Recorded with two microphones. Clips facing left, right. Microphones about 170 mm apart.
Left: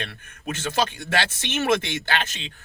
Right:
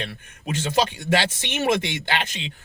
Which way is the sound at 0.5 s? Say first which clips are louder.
Right 3 dB; 15° right (ahead or behind).